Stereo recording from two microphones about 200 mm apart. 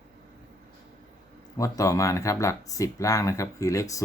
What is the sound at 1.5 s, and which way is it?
Speech, 15° left (ahead or behind).